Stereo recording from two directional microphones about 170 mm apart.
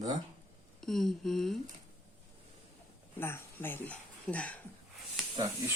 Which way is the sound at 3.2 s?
15° left (ahead or behind).